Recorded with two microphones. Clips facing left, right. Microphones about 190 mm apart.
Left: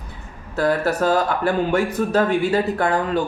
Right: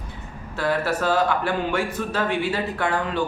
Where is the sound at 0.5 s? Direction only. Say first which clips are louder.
Left 4 dB; 40° left (ahead or behind).